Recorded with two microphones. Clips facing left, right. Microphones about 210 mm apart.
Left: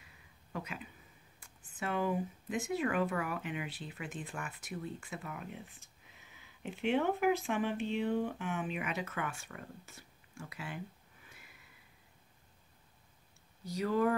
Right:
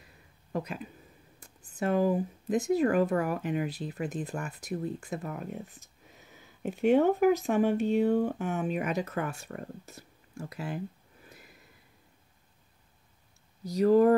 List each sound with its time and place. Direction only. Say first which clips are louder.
0.5 s speech: right 8 dB; 40° right (ahead or behind)
11.2 s a sound: right 8 dB; 40° right (ahead or behind)
13.7 s speech: right 10 dB; 40° right (ahead or behind)